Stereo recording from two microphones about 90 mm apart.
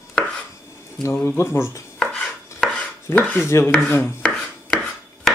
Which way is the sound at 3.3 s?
30° left (ahead or behind).